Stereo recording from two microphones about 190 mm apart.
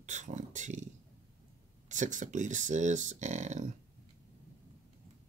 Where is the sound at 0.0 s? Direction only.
40° right (ahead or behind).